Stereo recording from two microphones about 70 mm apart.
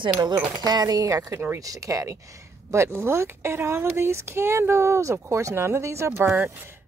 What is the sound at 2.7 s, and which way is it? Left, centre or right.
Speech, right.